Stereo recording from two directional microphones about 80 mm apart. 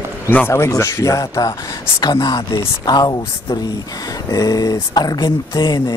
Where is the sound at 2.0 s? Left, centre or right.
Left.